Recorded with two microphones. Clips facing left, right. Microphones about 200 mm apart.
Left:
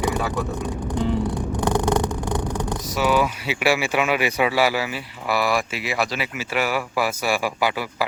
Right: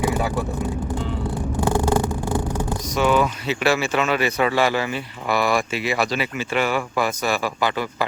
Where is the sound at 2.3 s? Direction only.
5° right (ahead or behind).